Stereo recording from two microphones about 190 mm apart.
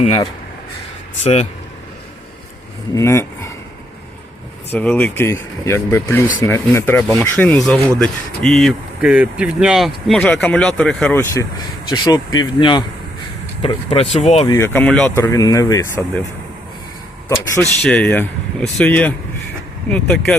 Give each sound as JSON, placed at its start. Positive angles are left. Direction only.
{"t": 0.0, "sound": "speech", "side_deg": 25}
{"t": 2.9, "sound": "speech", "side_deg": 15}
{"t": 4.7, "sound": "speech", "side_deg": 10}
{"t": 11.9, "sound": "speech", "side_deg": 20}
{"t": 14.4, "sound": "speech", "side_deg": 15}
{"t": 17.6, "sound": "speech", "side_deg": 5}